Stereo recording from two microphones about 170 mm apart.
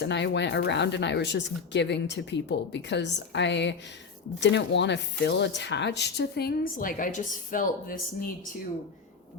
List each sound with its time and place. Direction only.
0.0 s speech: 90° left; by 7.9 s 50° left (ahead or behind)